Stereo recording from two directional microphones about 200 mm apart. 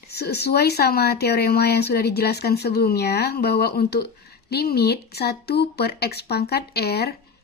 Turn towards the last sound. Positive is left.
turn(degrees=55)  # may be behind; listen again after turning